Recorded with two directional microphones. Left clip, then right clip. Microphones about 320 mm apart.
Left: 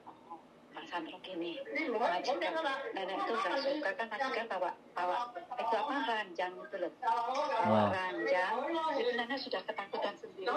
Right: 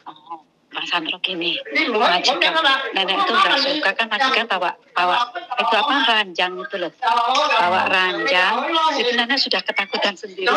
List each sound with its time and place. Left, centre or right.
0.7 s a woman's voice: right